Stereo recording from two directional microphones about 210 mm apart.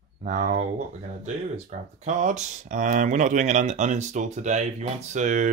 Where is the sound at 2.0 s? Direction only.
35° right (ahead or behind).